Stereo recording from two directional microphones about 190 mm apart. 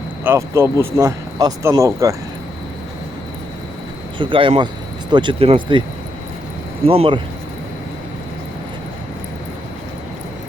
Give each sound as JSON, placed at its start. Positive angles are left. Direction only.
{"t": 0.3, "sound": "speech", "side_deg": -15}
{"t": 4.2, "sound": "speech", "side_deg": -25}
{"t": 6.8, "sound": "speech", "side_deg": -30}